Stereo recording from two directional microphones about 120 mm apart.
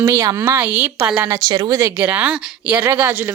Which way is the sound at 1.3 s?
35° right (ahead or behind).